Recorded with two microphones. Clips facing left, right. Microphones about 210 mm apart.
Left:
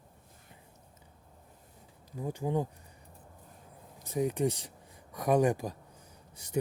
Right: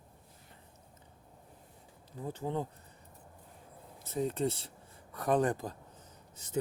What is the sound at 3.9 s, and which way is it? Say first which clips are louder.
Speech: left 3 dB; 15° left (ahead or behind).